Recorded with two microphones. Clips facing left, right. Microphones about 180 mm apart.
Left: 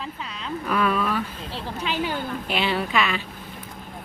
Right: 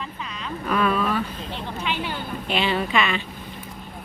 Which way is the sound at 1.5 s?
40° left (ahead or behind).